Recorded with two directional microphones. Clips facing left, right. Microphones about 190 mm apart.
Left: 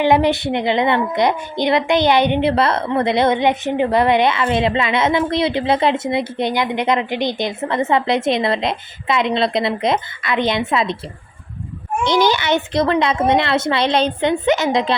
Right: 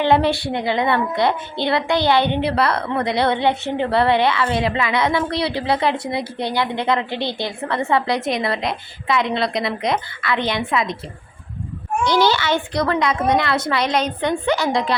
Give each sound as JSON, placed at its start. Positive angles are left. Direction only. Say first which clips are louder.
{"t": 0.0, "sound": "a woman's voice", "louder": "left 2 dB", "side_deg": 15}
{"t": 12.0, "sound": "a woman's voice", "louder": "left 2 dB", "side_deg": 20}